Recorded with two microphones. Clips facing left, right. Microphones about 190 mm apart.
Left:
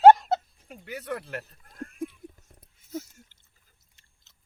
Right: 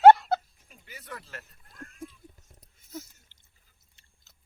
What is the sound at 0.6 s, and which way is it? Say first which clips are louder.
Speech: left 12 dB; 60° left (ahead or behind).